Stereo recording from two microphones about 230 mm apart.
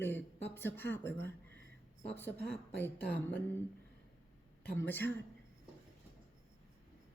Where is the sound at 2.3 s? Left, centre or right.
Left.